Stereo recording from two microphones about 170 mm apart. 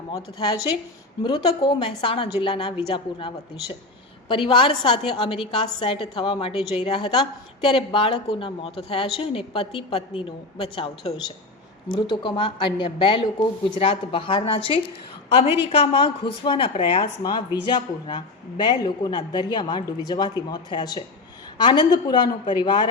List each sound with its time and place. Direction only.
0.1 s a woman's voice: 20° left (ahead or behind)